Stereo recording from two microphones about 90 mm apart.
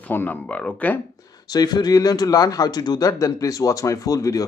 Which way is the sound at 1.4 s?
45° left (ahead or behind).